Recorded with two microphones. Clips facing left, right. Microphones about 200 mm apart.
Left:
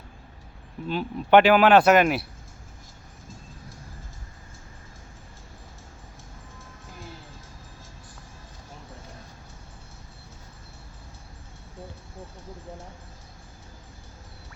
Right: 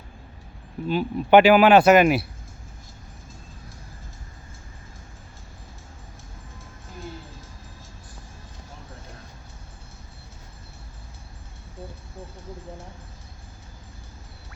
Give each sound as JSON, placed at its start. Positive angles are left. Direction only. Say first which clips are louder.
{"t": 0.9, "sound": "speech", "louder": "right 2 dB", "side_deg": -5}